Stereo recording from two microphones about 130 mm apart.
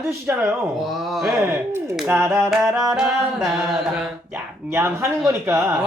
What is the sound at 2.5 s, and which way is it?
Speech, centre (ahead or behind).